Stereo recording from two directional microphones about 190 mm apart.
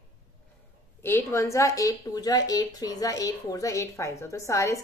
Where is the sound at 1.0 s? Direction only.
15° left (ahead or behind).